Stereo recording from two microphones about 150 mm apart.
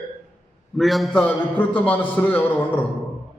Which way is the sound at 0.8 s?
Centre (ahead or behind).